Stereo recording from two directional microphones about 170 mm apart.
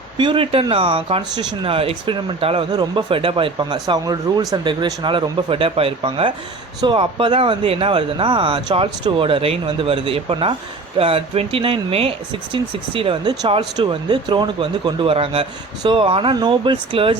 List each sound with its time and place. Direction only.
0.2 s speech: 30° right (ahead or behind)